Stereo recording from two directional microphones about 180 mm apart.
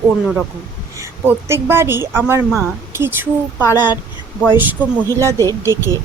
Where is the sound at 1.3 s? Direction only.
15° right (ahead or behind).